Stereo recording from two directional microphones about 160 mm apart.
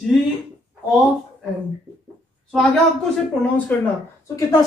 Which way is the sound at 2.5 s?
Centre (ahead or behind).